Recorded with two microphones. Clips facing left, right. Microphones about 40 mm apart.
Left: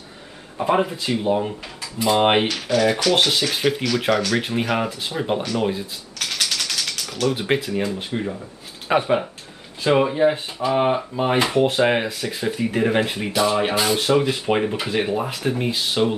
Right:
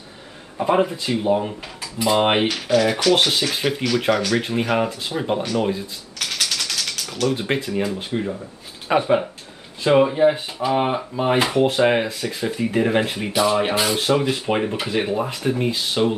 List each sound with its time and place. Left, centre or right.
0.6 s speech: centre
6.1 s mechanisms: centre
7.4 s speech: centre